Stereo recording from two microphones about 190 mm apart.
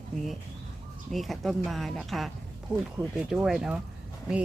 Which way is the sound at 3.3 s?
5° right (ahead or behind).